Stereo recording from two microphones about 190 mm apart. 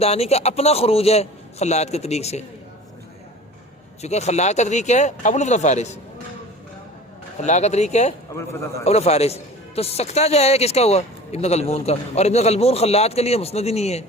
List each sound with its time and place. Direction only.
0.0 s a man's voice: 35° left (ahead or behind)
4.0 s a man's voice: 35° left (ahead or behind)
7.3 s a man's voice: 35° left (ahead or behind)